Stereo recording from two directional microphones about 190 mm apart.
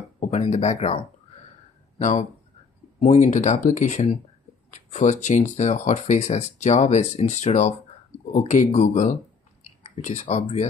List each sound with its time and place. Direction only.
0.2 s speech: 35° left (ahead or behind)